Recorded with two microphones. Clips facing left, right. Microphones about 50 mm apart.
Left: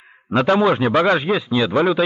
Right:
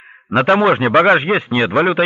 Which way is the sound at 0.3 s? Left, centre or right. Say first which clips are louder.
Right 3 dB; right.